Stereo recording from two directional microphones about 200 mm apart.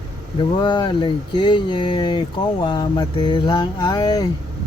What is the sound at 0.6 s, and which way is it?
Speech, 25° left (ahead or behind).